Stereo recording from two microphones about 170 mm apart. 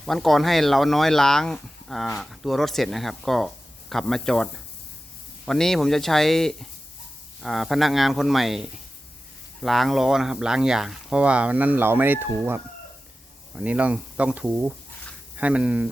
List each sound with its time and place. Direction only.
0.0 s speech: centre (ahead or behind)